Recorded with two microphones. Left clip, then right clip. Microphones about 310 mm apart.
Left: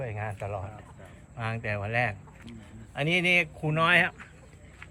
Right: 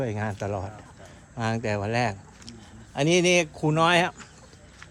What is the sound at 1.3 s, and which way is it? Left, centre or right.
Speech, centre.